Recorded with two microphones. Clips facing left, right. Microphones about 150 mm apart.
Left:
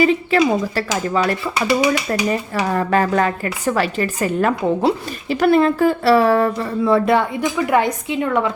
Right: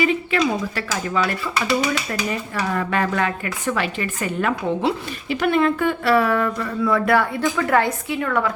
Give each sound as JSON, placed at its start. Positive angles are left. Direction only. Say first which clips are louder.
{"t": 0.0, "sound": "a woman's voice", "louder": "left 5 dB", "side_deg": 35}
{"t": 1.8, "sound": "speech", "louder": "left 5 dB", "side_deg": 15}
{"t": 2.6, "sound": "a woman's voice", "louder": "left 4 dB", "side_deg": 35}